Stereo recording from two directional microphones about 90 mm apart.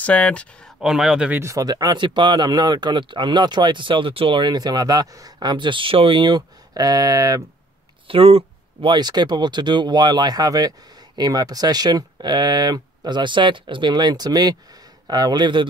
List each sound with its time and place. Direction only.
0.0 s speech: 15° left (ahead or behind)
0.7 s speech: 5° right (ahead or behind)
1.4 s speech: 40° right (ahead or behind); by 6.4 s 65° right (ahead or behind)
6.7 s speech: 45° right (ahead or behind)
8.1 s speech: 90° right
8.9 s speech: 50° right (ahead or behind)